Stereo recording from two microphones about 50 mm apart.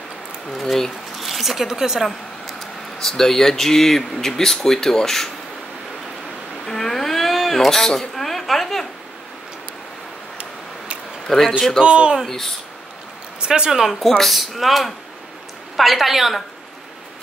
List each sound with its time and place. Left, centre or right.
0.5 s speech: centre
2.0 s speech: centre
6.6 s a sound: centre
11.2 s a man's voice: centre
11.8 s speech: centre
12.3 s speech: centre
13.4 s speech: centre
14.0 s speech: centre